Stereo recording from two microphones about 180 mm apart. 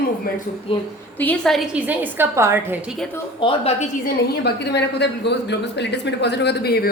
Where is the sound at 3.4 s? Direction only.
35° left (ahead or behind).